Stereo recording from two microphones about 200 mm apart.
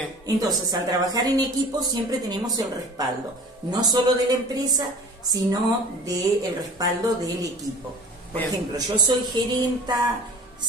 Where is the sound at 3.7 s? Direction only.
20° right (ahead or behind).